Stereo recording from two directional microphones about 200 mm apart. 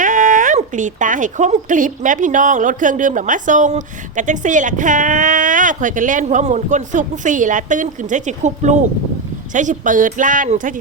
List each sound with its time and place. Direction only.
0.0 s speech: 40° right (ahead or behind)